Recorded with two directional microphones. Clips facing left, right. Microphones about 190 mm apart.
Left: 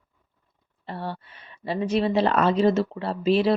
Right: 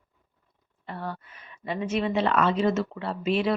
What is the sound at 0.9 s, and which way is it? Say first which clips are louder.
Speech: left 2 dB; 30° left (ahead or behind).